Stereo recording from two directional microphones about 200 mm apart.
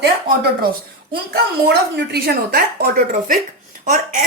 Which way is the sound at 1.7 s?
55° right (ahead or behind).